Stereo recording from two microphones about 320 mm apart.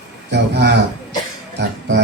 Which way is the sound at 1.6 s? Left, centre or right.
Right.